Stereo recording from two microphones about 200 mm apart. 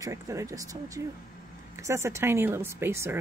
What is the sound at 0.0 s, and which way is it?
Speech, 15° right (ahead or behind).